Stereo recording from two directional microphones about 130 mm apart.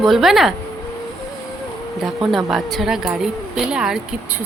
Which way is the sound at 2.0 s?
5° right (ahead or behind).